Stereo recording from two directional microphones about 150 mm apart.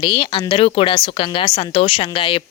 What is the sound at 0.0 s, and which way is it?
A woman's voice, 35° left (ahead or behind).